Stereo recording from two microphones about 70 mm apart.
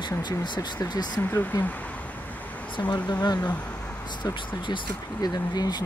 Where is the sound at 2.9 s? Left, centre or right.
Left.